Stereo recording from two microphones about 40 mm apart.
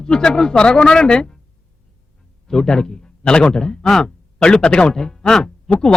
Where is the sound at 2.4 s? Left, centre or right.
Centre.